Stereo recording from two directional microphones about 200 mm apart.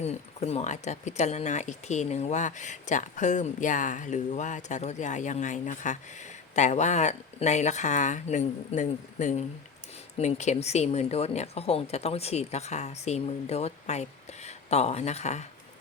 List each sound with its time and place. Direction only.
0.0 s speech: 30° left (ahead or behind)